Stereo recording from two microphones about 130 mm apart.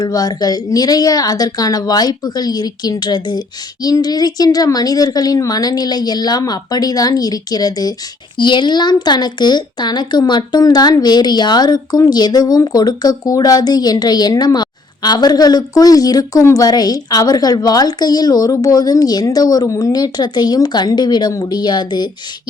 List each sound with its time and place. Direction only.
0.0 s a woman's voice: 30° left (ahead or behind)